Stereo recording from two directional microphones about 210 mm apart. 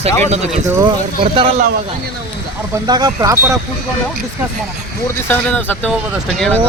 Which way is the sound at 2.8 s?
20° right (ahead or behind).